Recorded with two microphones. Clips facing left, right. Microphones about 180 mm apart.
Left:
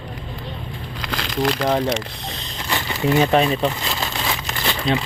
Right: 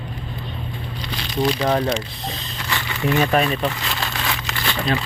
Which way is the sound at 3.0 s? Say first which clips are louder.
Left 2 dB; 20° left (ahead or behind).